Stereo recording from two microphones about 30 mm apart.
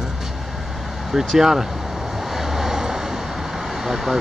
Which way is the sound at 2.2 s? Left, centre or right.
Centre.